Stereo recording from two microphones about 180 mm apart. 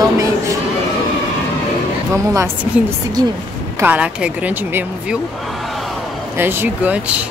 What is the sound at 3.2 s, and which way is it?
Speech, 25° right (ahead or behind).